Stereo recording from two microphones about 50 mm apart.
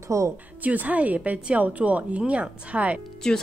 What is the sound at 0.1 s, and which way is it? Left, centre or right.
Speech, right.